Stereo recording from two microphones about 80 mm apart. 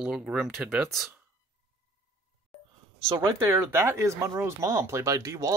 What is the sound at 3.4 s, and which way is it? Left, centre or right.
Speech, right.